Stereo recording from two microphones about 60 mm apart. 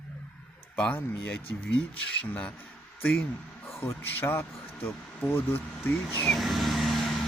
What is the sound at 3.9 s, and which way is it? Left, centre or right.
Speech, left.